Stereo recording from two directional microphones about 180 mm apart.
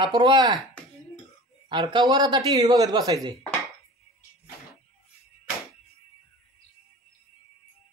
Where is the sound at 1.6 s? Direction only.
25° right (ahead or behind).